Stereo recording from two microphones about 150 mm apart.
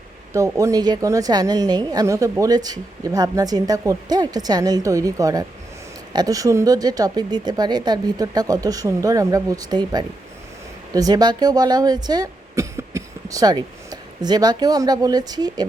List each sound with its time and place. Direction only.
0.3 s a woman's voice: 20° right (ahead or behind)